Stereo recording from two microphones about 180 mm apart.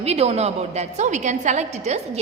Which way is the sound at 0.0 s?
35° right (ahead or behind).